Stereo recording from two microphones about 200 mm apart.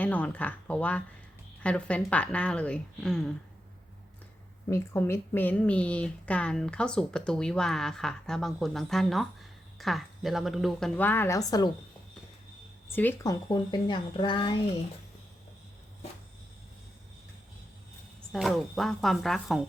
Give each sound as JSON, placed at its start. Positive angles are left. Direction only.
{"t": 0.0, "sound": "speech", "side_deg": 5}
{"t": 4.7, "sound": "speech", "side_deg": 15}
{"t": 12.9, "sound": "speech", "side_deg": 10}
{"t": 18.3, "sound": "speech", "side_deg": 0}